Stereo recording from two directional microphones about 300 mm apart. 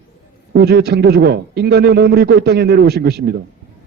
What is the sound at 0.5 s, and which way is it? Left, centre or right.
A man's voice, right.